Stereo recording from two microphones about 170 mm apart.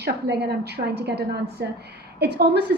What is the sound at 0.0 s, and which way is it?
A woman's voice, 75° right (ahead or behind).